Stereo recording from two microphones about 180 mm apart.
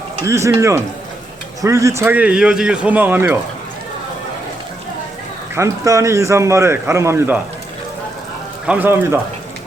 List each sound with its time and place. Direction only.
0.3 s speech: 15° right (ahead or behind)
5.5 s speech: 15° right (ahead or behind)
8.6 s speech: 10° right (ahead or behind)